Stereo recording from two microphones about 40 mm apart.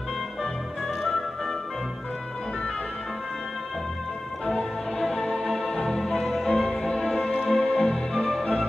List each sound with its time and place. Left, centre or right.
0.8 s music: centre
4.5 s music: centre